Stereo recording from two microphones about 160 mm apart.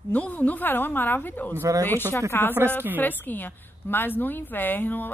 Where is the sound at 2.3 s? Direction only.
15° left (ahead or behind).